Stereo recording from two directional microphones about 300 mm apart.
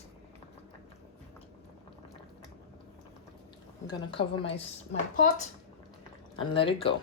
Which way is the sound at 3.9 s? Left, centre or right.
Centre.